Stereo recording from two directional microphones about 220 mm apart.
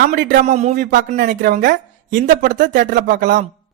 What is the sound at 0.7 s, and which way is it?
Speech, 40° right (ahead or behind).